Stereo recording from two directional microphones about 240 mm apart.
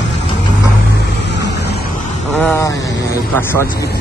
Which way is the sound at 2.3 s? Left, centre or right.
Centre.